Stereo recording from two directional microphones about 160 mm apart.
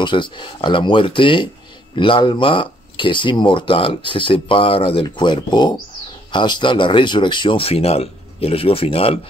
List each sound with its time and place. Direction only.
0.0 s speech: 30° left (ahead or behind)